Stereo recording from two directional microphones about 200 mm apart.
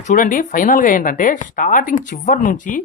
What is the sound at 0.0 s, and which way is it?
Speech, 40° left (ahead or behind).